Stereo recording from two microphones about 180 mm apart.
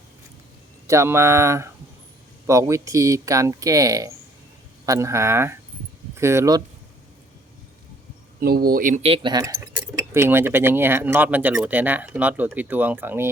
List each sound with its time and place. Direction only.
0.9 s speech: 15° right (ahead or behind)
8.4 s speech: 55° right (ahead or behind); by 13.3 s 10° right (ahead or behind)